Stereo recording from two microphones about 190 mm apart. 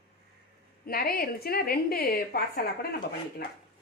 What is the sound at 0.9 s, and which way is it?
A woman's voice, 50° left (ahead or behind).